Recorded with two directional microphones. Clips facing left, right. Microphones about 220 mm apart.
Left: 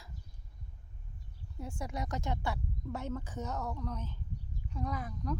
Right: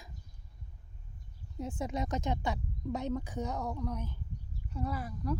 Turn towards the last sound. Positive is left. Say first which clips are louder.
# right 2 dB
turn(degrees=-5)  # may be behind; listen again after turning